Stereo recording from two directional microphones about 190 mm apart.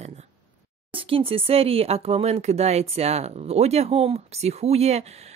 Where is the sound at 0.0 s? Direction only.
35° right (ahead or behind).